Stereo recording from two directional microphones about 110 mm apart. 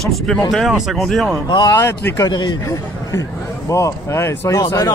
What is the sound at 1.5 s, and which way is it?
Speech, 45° left (ahead or behind).